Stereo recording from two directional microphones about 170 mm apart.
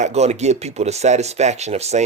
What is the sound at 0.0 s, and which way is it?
Speech, 40° right (ahead or behind).